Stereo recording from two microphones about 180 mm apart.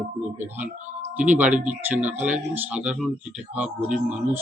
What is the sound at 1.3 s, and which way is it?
Speech, 10° right (ahead or behind).